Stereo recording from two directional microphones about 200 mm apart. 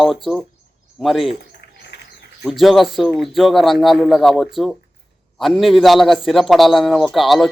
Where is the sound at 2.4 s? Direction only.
Centre (ahead or behind).